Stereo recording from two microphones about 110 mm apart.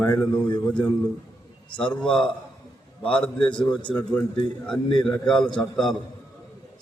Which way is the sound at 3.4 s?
45° left (ahead or behind).